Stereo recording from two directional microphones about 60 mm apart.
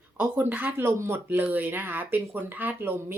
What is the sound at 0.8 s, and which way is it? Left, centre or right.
A woman's voice, right.